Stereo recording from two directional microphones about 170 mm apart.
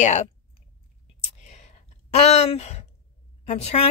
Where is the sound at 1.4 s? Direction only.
40° left (ahead or behind).